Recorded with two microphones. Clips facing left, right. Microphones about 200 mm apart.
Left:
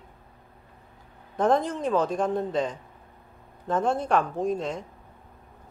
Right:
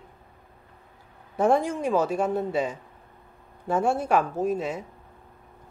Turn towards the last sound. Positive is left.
turn(degrees=-5)  # may be behind; listen again after turning